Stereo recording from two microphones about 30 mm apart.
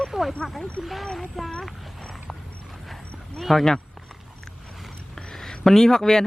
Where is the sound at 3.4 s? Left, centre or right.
Centre.